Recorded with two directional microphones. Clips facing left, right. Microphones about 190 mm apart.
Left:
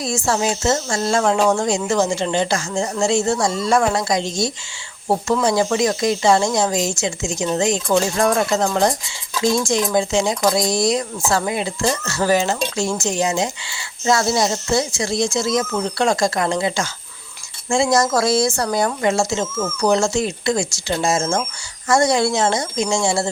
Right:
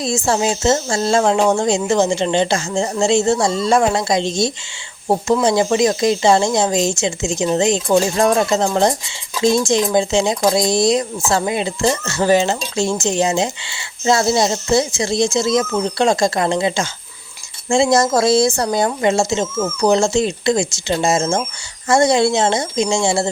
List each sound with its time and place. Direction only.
0.0 s speech: 25° right (ahead or behind)